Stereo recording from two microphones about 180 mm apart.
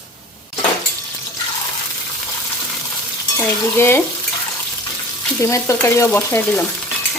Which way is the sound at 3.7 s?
15° left (ahead or behind).